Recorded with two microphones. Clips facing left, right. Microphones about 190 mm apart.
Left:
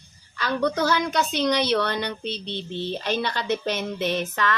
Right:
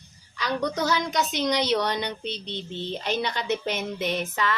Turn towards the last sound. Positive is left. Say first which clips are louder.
# left 2 dB
turn(degrees=-10)  # may be behind; listen again after turning